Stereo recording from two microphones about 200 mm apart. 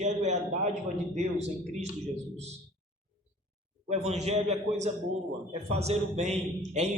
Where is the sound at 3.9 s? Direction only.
35° right (ahead or behind).